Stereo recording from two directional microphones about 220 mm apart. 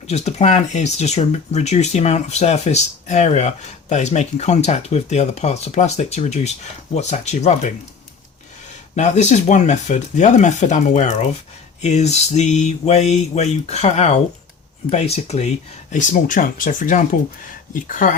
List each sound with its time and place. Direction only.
0.1 s speech: 30° left (ahead or behind)
9.0 s speech: 30° left (ahead or behind)